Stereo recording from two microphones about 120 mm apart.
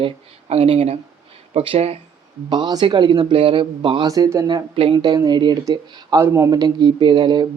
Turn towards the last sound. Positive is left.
turn(degrees=-40)  # may be behind; listen again after turning